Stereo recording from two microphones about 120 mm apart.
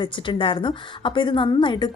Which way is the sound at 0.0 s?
45° left (ahead or behind).